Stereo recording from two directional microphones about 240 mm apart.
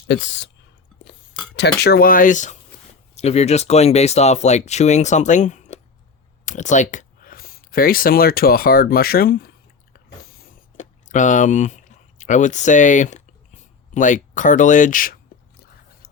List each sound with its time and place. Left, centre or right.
0.1 s speech: left
1.5 s speech: left
10.5 s a sound: left